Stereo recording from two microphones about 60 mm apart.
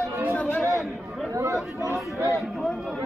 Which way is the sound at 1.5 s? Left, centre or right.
Left.